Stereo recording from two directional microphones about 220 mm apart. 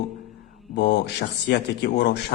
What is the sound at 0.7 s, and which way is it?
A man's voice, 50° left (ahead or behind).